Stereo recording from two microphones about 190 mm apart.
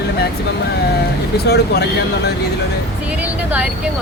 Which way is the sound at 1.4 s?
60° left (ahead or behind).